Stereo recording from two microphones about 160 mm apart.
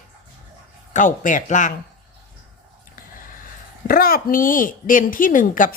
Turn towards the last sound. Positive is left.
turn(degrees=55)  # may be behind; listen again after turning